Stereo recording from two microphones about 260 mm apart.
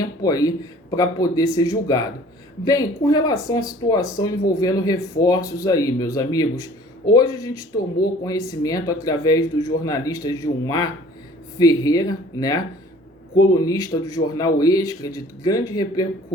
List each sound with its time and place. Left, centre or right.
0.2 s speech: centre